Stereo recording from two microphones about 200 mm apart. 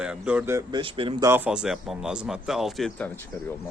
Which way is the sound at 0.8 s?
25° right (ahead or behind).